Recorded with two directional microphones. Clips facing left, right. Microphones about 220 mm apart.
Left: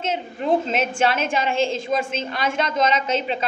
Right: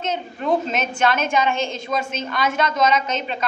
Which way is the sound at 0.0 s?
25° left (ahead or behind).